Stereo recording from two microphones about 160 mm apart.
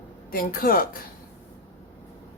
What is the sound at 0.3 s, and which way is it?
Speech, 65° left (ahead or behind).